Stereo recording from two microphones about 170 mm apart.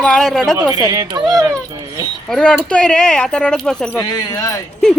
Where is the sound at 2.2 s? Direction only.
5° left (ahead or behind).